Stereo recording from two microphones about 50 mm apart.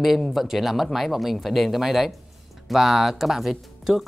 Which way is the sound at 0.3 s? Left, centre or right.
Centre.